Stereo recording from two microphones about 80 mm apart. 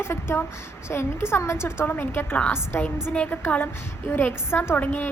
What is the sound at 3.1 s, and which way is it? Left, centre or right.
A woman's voice, centre.